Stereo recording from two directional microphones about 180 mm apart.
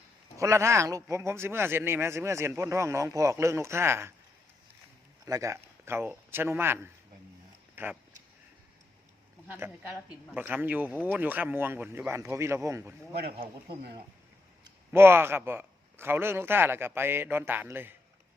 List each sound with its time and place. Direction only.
0.3 s a man's voice: 15° right (ahead or behind)
5.2 s a man's voice: 20° right (ahead or behind)
9.5 s a man's voice: 10° right (ahead or behind)
14.9 s a man's voice: 15° right (ahead or behind)